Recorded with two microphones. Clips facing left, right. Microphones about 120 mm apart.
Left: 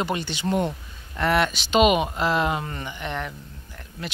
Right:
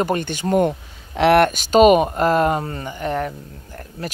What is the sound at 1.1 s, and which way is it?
Speech, 65° right (ahead or behind).